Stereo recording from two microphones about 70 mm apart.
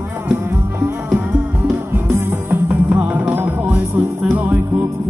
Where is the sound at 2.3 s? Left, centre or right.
Right.